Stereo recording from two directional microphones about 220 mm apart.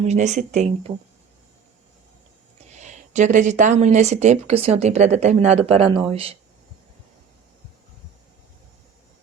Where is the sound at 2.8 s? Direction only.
35° right (ahead or behind).